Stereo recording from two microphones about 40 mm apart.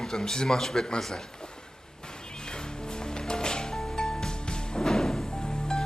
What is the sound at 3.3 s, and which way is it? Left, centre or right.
Music, centre.